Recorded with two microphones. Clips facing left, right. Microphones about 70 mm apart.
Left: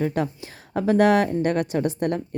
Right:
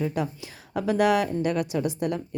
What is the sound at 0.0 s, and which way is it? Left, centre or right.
A woman's voice, left.